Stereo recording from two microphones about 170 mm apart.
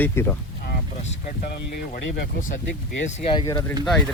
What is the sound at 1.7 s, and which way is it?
Speech, 60° left (ahead or behind).